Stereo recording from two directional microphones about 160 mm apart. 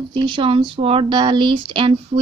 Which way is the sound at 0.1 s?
30° right (ahead or behind).